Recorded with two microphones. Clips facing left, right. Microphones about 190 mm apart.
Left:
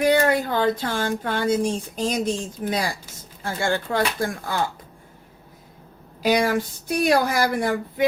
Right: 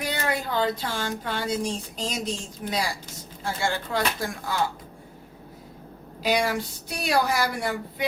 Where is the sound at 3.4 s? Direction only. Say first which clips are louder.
Left 4 dB; 50° left (ahead or behind).